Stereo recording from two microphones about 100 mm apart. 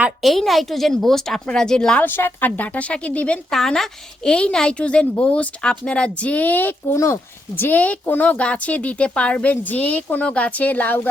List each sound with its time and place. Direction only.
0.2 s a woman's voice: centre (ahead or behind)
2.0 s speech: 20° left (ahead or behind)
6.9 s speech: 25° left (ahead or behind)